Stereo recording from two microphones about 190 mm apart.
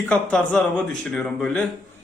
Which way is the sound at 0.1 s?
5° left (ahead or behind).